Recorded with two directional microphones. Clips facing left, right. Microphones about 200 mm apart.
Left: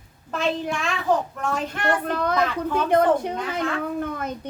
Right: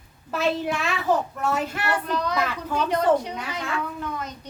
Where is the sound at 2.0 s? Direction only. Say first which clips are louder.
Left 3 dB; 55° left (ahead or behind).